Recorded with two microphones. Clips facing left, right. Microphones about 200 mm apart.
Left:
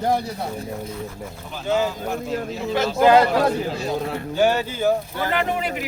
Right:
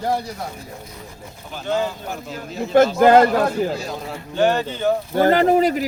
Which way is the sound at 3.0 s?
50° right (ahead or behind).